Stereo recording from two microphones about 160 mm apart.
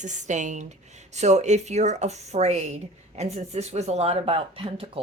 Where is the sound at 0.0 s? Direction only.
50° right (ahead or behind).